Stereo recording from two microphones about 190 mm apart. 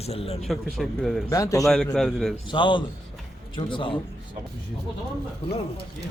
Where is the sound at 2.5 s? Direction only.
25° left (ahead or behind).